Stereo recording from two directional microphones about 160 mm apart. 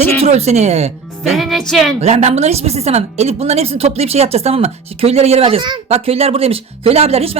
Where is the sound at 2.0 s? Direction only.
45° right (ahead or behind).